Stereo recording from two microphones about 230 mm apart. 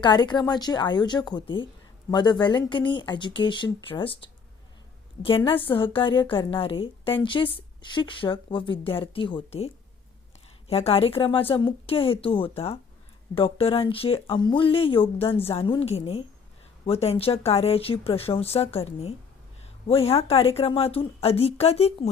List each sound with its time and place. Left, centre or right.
0.0 s speech: centre